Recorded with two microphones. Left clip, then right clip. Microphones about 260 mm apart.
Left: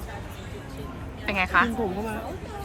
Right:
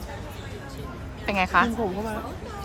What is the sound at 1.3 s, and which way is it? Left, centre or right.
Speech, centre.